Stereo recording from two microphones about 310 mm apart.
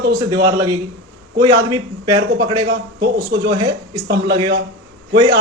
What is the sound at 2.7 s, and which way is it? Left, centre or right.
Speech, right.